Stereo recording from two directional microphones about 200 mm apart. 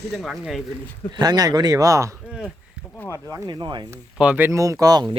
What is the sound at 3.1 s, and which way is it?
Speech, 15° right (ahead or behind).